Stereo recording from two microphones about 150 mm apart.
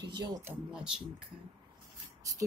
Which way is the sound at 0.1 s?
25° right (ahead or behind).